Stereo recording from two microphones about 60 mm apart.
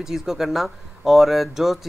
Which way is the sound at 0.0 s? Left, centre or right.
Centre.